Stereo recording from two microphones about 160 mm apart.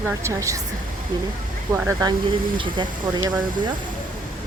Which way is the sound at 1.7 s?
20° right (ahead or behind).